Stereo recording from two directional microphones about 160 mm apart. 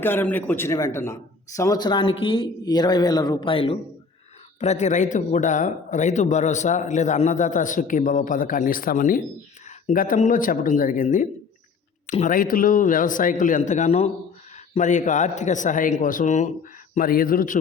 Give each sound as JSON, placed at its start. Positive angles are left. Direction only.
{"t": 0.0, "sound": "speech", "side_deg": 15}
{"t": 4.6, "sound": "speech", "side_deg": 45}